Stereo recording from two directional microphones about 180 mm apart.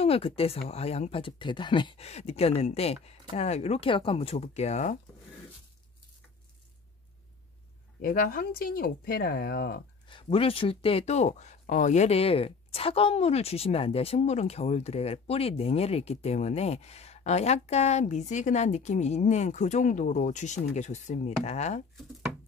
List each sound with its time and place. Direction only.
0.0 s speech: 35° left (ahead or behind)
8.0 s speech: 55° left (ahead or behind)
10.0 s speech: 30° left (ahead or behind)